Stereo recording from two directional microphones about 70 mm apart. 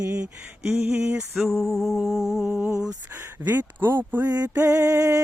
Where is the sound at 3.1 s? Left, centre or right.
Right.